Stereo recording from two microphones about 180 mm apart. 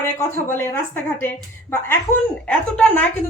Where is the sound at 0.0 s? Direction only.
15° left (ahead or behind).